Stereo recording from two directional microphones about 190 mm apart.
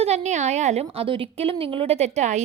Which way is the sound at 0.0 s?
35° right (ahead or behind).